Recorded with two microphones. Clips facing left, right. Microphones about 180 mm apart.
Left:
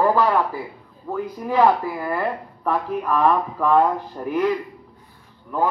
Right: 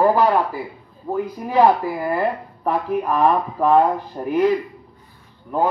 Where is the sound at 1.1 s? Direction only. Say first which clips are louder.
Right 1 dB; 30° right (ahead or behind).